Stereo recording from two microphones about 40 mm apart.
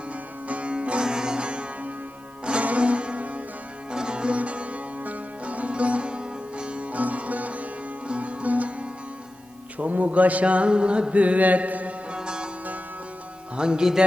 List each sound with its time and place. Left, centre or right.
0.4 s music: right
1.0 s sitar: centre
2.4 s music: right
3.9 s music: right
9.7 s mantra: right
12.1 s music: right
13.6 s music: right